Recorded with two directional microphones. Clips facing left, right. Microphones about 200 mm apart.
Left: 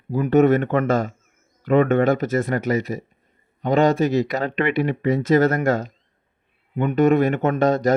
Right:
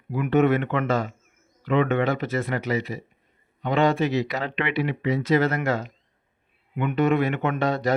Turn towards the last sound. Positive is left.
turn(degrees=45)  # may be behind; listen again after turning